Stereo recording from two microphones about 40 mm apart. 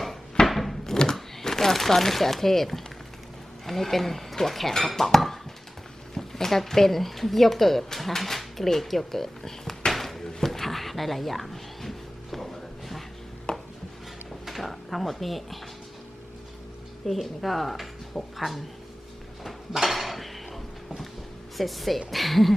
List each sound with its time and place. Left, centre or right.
0.4 s a sound: centre
0.9 s speech: centre
9.9 s a sound: centre
13.5 s chopping: centre
14.4 s drawer open or close: centre
17.1 s speech: centre
19.7 s dishes: centre
21.6 s speech: centre